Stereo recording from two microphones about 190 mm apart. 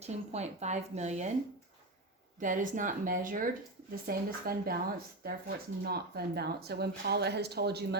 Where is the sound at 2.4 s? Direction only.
45° right (ahead or behind).